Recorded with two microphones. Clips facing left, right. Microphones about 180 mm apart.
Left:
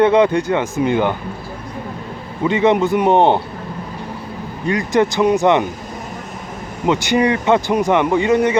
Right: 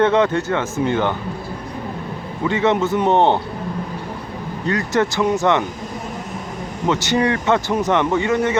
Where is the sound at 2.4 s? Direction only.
15° left (ahead or behind).